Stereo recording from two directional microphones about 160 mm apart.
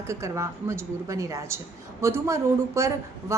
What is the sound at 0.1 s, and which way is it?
A woman's voice, 15° right (ahead or behind).